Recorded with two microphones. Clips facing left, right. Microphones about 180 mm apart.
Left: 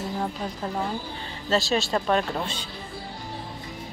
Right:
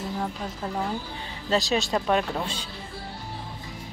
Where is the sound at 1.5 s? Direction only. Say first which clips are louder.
Even; 15° right (ahead or behind).